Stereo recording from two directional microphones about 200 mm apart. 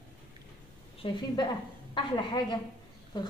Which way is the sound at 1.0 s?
25° left (ahead or behind).